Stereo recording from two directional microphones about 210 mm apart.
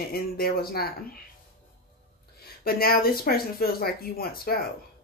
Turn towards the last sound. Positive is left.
turn(degrees=45)  # may be behind; listen again after turning